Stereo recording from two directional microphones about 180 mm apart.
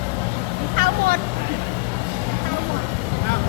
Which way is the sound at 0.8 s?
55° right (ahead or behind).